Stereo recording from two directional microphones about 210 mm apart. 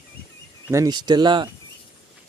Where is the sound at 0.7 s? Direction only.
20° right (ahead or behind).